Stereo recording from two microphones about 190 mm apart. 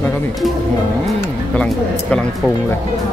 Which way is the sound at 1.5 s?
5° left (ahead or behind).